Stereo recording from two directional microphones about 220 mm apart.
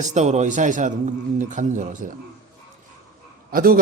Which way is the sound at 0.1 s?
30° right (ahead or behind).